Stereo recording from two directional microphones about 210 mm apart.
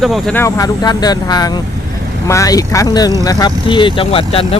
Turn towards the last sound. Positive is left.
turn(degrees=25)  # may be behind; listen again after turning